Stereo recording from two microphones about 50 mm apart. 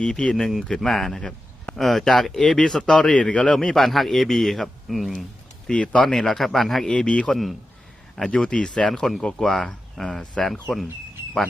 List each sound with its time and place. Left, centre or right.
0.0 s speech: centre
3.6 s speech: centre
5.6 s speech: centre
6.8 s speech: centre
7.3 s speech: centre
8.2 s speech: centre
8.9 s speech: centre